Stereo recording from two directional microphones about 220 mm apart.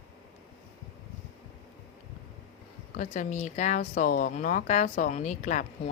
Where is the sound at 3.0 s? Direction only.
35° left (ahead or behind).